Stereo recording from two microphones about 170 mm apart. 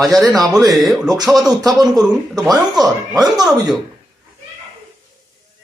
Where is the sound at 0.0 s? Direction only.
20° right (ahead or behind).